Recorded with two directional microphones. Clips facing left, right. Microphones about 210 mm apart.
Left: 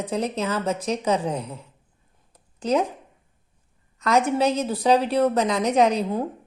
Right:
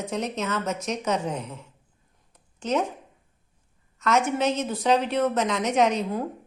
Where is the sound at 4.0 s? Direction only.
35° left (ahead or behind).